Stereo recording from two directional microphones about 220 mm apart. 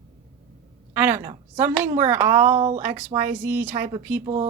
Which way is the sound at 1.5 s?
10° right (ahead or behind).